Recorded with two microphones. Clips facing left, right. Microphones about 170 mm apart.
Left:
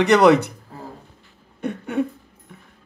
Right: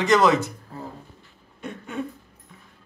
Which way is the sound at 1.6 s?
65° left (ahead or behind).